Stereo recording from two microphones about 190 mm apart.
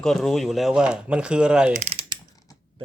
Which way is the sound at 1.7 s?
30° right (ahead or behind).